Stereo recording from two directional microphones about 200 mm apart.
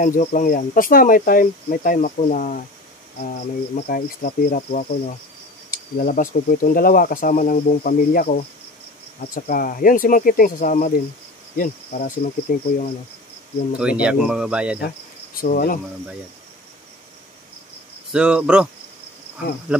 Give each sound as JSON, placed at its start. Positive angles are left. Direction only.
{"t": 0.0, "sound": "speech", "side_deg": 40}
{"t": 13.7, "sound": "speech", "side_deg": -5}
{"t": 15.3, "sound": "speech", "side_deg": 45}
{"t": 18.1, "sound": "speech", "side_deg": -5}
{"t": 19.7, "sound": "cricket", "side_deg": -5}